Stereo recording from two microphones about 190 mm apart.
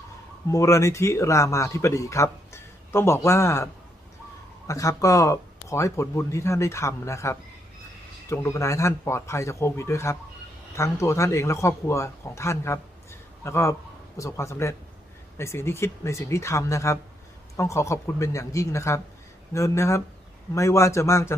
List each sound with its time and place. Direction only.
0.5 s speech: 15° left (ahead or behind)
4.7 s speech: 15° left (ahead or behind)